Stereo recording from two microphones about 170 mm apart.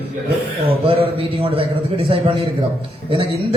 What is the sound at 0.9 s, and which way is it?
A man's voice, 30° right (ahead or behind).